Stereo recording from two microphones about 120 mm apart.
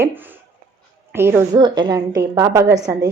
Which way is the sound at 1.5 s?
40° right (ahead or behind).